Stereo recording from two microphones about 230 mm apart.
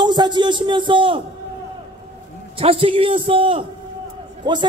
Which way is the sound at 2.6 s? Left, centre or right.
Right.